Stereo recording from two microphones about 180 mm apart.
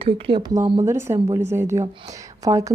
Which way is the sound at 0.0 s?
25° right (ahead or behind).